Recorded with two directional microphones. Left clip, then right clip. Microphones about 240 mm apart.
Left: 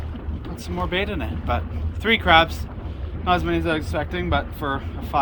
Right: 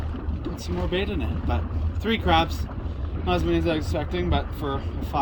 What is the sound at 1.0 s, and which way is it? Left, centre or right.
Speech, left.